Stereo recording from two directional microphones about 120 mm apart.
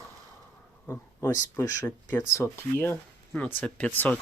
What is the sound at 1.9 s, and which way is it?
Speech, 15° left (ahead or behind).